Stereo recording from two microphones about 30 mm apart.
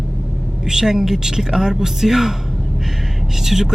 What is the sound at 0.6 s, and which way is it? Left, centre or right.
Speech, centre.